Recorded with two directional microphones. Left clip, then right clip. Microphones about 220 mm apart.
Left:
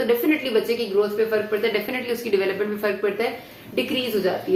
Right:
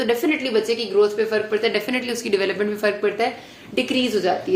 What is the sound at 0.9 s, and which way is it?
A woman's voice, 45° right (ahead or behind).